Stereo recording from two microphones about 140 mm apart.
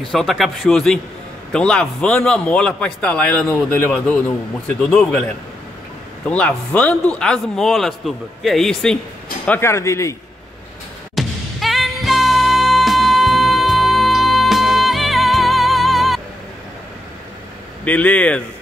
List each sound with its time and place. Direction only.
0.1 s a man's voice: centre (ahead or behind)
6.2 s a man's voice: 10° left (ahead or behind)
9.5 s speech: 20° left (ahead or behind)
11.1 s music: centre (ahead or behind)
17.8 s a man's voice: 10° left (ahead or behind)